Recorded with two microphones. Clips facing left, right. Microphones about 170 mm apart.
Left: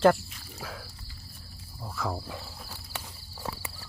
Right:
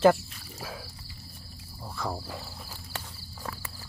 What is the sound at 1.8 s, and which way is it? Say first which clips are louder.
Insect: left 1 dB; centre (ahead or behind).